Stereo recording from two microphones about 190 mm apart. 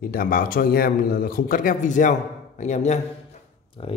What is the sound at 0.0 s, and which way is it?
A man's voice, 50° left (ahead or behind).